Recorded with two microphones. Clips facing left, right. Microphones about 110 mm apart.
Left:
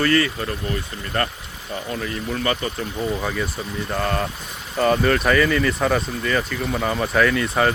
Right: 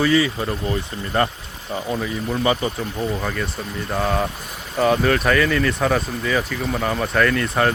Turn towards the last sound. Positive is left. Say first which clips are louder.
# even
turn(degrees=0)  # may be behind; listen again after turning